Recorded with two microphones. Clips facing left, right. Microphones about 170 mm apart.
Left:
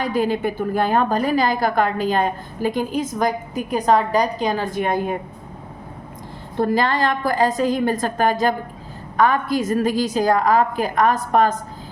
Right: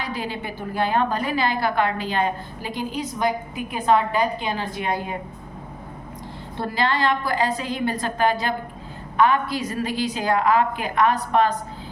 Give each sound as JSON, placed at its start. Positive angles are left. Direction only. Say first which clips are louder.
{"t": 0.0, "sound": "a woman's voice", "louder": "left 9 dB", "side_deg": 45}
{"t": 6.6, "sound": "a woman's voice", "louder": "left 4 dB", "side_deg": 45}